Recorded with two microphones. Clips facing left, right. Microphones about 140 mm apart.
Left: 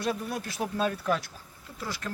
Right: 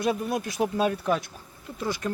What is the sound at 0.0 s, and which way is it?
Speech, 15° right (ahead or behind).